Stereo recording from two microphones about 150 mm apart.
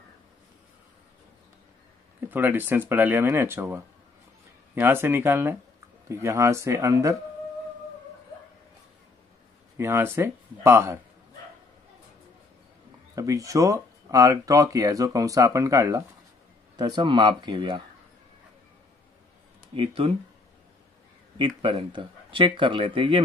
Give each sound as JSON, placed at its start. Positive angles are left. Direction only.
{"t": 2.1, "sound": "speech", "side_deg": -15}
{"t": 9.8, "sound": "speech", "side_deg": -15}
{"t": 13.1, "sound": "speech", "side_deg": -20}
{"t": 19.7, "sound": "speech", "side_deg": -35}
{"t": 21.4, "sound": "speech", "side_deg": -35}